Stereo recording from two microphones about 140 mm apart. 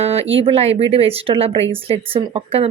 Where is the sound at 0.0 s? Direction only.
50° right (ahead or behind).